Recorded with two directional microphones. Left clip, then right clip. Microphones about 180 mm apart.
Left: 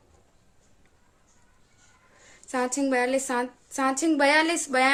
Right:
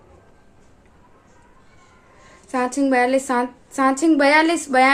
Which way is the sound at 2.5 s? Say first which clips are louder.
Right 6 dB; 30° left (ahead or behind).